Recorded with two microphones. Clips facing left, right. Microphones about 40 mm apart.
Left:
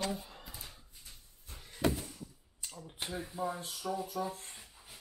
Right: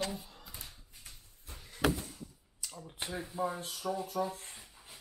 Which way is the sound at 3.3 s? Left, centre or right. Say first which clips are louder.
Right 3 dB; centre.